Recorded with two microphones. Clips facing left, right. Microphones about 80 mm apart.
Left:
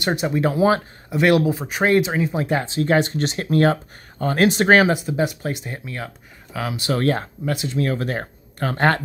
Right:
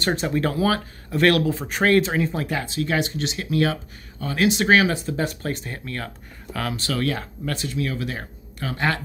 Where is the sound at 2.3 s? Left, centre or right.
Left.